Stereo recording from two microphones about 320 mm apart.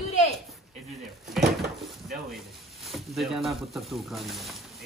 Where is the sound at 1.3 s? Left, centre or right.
Centre.